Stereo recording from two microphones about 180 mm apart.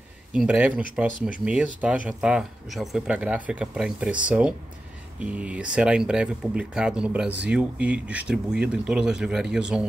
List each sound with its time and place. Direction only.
0.3 s speech: 5° right (ahead or behind)